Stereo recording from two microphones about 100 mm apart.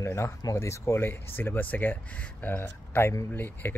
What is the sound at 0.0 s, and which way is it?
Speech, 25° left (ahead or behind).